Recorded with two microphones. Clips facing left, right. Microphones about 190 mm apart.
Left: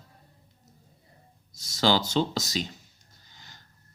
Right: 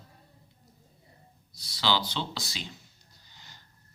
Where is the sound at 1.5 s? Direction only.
45° left (ahead or behind).